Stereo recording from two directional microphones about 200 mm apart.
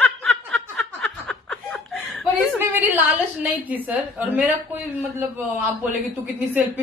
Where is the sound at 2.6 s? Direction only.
10° right (ahead or behind).